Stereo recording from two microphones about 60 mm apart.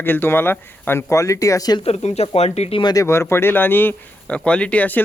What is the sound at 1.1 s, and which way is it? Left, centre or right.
Speech, left.